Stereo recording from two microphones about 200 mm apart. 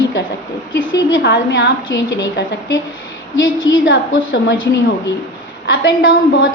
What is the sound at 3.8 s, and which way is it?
Speech, 75° left (ahead or behind).